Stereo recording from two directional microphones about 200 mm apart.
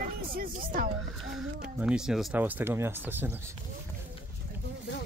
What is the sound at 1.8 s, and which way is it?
Speech, 5° right (ahead or behind).